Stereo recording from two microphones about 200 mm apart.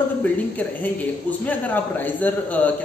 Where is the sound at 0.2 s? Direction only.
10° left (ahead or behind).